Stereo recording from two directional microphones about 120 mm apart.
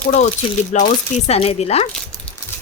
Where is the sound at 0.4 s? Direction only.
50° left (ahead or behind).